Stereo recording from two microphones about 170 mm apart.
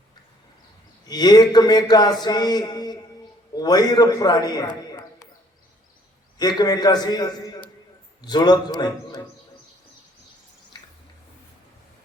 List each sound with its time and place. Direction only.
1.0 s a man's voice: 25° left (ahead or behind)
4.9 s a sound: 20° left (ahead or behind)
6.4 s a man's voice: 25° left (ahead or behind)